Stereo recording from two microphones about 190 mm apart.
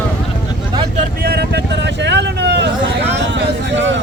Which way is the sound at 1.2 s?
60° right (ahead or behind).